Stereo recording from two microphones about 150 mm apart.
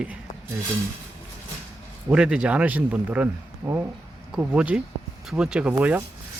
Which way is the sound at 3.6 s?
20° right (ahead or behind).